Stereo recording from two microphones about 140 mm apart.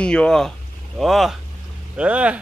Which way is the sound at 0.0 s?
5° left (ahead or behind).